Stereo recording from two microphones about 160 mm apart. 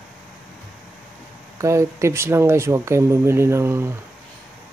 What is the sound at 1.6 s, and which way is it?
Speech, 20° right (ahead or behind).